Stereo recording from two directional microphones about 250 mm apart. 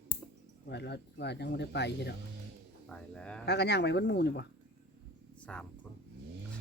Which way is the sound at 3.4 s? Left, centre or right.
Left.